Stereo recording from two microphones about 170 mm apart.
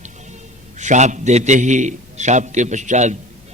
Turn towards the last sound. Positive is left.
turn(degrees=-45)  # may be behind; listen again after turning